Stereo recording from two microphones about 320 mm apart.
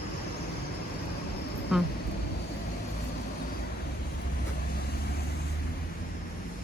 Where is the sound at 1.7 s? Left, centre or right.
Centre.